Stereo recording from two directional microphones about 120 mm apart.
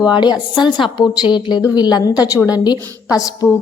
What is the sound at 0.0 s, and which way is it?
A woman's voice, 40° left (ahead or behind).